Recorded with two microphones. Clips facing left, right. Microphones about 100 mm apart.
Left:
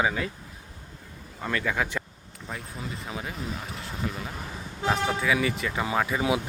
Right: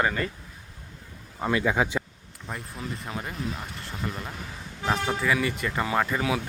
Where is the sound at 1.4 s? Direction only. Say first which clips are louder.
Right 4 dB; 20° right (ahead or behind).